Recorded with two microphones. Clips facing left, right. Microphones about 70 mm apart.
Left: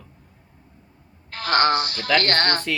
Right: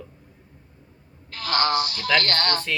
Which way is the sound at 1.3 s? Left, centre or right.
Left.